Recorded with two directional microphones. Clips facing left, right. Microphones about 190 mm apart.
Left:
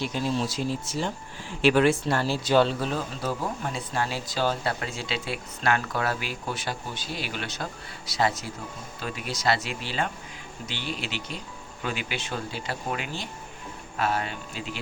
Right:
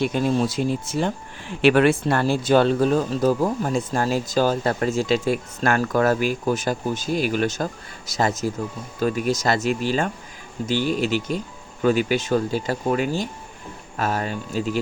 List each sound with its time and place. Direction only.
0.0 s speech: 55° right (ahead or behind)